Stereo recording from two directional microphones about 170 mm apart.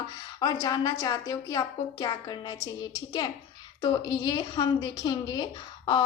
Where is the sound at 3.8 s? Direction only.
25° left (ahead or behind).